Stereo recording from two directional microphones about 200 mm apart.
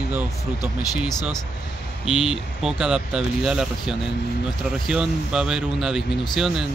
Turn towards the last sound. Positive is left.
turn(degrees=0)  # may be behind; listen again after turning